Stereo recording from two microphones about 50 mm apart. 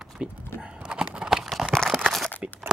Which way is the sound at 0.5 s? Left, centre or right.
Centre.